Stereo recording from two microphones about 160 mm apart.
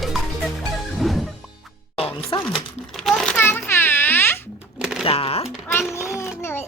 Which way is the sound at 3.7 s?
15° left (ahead or behind).